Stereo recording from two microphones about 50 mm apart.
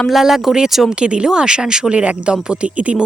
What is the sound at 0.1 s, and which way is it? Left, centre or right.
Speech, centre.